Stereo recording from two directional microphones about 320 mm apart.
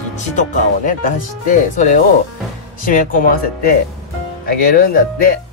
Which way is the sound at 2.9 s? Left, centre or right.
Left.